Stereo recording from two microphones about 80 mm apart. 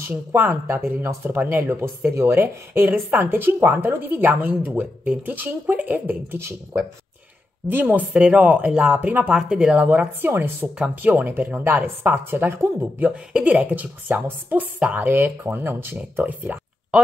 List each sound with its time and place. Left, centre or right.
0.1 s speech: right
7.6 s speech: right
9.8 s speech: right